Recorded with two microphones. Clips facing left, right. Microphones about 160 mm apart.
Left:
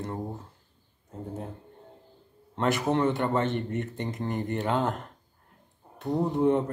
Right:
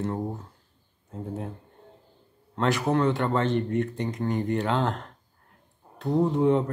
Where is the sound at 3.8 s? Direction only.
Centre (ahead or behind).